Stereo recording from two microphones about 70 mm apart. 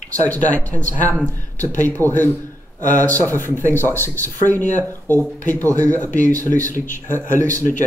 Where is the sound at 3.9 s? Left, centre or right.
Left.